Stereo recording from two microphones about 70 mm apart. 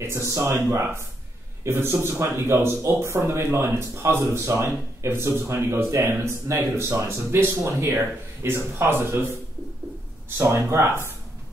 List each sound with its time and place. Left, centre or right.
0.0 s a man's voice: right
10.3 s speech: right